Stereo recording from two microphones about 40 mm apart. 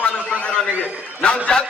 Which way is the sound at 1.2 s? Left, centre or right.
Left.